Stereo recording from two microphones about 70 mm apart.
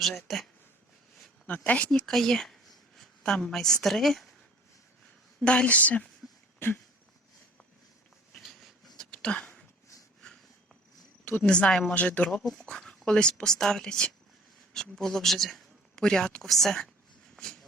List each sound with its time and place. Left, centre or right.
0.0 s speech: centre
1.5 s speech: left
2.0 s a woman's voice: centre
5.4 s speech: centre
8.3 s a sound: centre
9.0 s a sound: centre
11.3 s speech: centre
11.9 s a man's voice: centre
17.3 s a sound: centre